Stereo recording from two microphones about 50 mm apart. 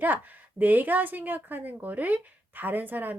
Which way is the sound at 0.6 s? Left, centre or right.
Right.